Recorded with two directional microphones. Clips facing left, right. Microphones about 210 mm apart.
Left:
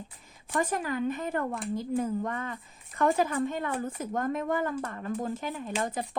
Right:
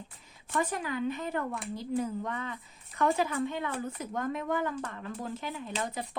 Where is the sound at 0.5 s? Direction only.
45° left (ahead or behind).